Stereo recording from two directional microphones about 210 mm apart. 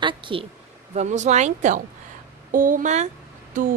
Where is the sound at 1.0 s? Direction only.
35° right (ahead or behind).